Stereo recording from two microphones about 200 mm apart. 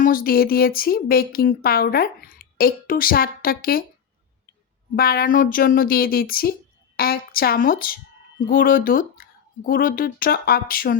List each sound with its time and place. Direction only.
0.0 s speech: 45° left (ahead or behind)
4.9 s speech: 50° left (ahead or behind)